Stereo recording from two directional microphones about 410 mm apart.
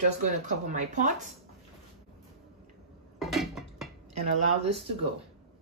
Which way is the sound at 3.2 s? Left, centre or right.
Centre.